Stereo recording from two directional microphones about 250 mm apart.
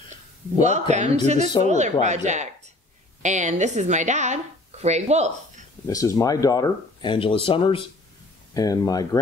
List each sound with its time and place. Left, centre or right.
0.6 s a woman's voice: right
5.9 s speech: centre